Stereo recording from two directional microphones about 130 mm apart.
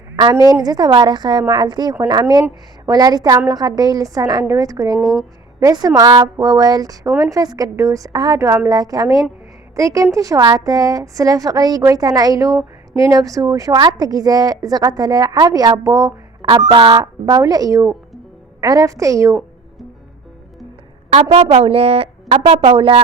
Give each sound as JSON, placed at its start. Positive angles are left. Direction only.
{"t": 0.2, "sound": "a woman's voice", "side_deg": -30}
{"t": 21.2, "sound": "speech", "side_deg": -45}